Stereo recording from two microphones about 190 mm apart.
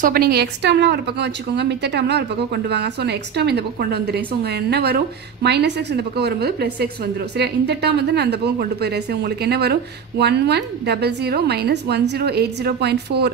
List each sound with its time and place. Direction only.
0.0 s a woman's voice: 55° right (ahead or behind)